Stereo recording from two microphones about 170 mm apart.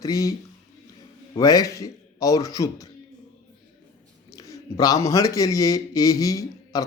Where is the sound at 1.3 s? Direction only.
20° left (ahead or behind).